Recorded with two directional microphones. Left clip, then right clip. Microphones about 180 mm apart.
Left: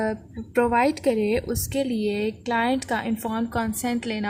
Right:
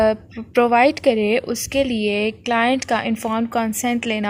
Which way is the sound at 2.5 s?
25° right (ahead or behind).